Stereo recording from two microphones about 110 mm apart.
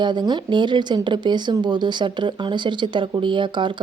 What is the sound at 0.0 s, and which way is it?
Speech, 45° right (ahead or behind).